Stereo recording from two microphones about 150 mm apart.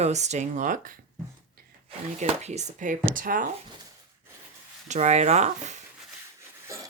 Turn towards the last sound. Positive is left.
turn(degrees=-50)  # may be behind; listen again after turning